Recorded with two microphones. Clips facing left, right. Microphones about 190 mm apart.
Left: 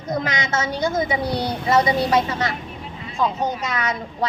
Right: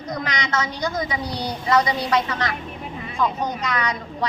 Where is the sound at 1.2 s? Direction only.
55° left (ahead or behind).